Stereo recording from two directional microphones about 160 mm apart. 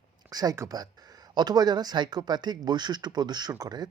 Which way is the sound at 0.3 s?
25° right (ahead or behind).